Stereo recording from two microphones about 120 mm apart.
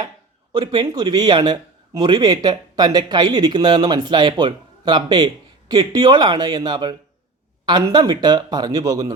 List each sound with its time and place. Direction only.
0.5 s a man's voice: 35° right (ahead or behind)